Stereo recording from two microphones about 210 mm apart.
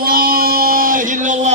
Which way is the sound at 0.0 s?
45° right (ahead or behind).